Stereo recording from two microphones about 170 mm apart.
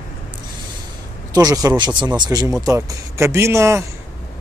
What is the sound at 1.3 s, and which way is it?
Speech, 20° right (ahead or behind).